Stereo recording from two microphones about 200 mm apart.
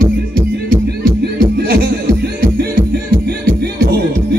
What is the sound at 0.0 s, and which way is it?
Music, 45° right (ahead or behind).